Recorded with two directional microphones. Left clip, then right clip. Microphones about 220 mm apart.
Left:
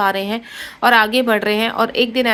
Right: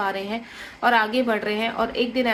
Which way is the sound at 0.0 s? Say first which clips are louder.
Left 8 dB; 45° left (ahead or behind).